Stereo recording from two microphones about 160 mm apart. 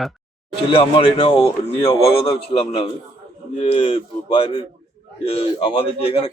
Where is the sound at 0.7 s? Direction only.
35° left (ahead or behind).